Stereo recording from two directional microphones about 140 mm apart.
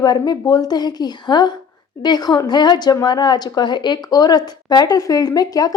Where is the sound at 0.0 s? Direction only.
30° left (ahead or behind).